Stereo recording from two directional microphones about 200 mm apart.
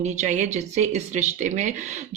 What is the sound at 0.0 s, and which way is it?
Speech, 35° right (ahead or behind).